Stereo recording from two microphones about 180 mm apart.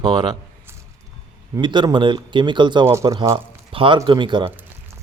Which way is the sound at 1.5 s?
25° right (ahead or behind).